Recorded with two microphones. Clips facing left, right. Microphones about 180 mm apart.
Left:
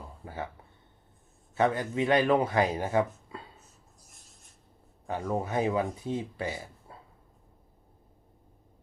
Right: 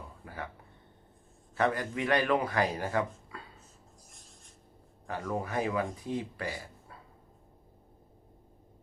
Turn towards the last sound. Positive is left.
turn(degrees=25)  # may be behind; listen again after turning